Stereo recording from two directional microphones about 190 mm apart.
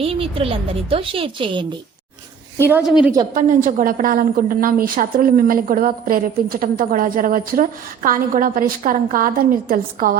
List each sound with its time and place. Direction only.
0.0 s a woman's voice: 30° right (ahead or behind)
2.6 s a woman's voice: 10° right (ahead or behind)
3.3 s a woman's voice: 45° right (ahead or behind)